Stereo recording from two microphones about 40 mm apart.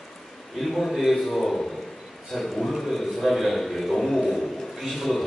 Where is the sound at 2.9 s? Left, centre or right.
Centre.